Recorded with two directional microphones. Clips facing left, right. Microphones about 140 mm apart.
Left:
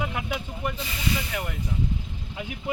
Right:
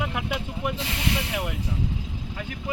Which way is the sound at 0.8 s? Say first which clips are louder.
Right 1 dB; 70° right (ahead or behind).